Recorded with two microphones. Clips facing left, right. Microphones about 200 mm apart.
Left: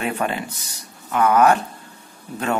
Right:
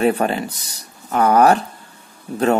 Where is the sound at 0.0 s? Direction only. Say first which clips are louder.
Right 7 dB; 35° right (ahead or behind).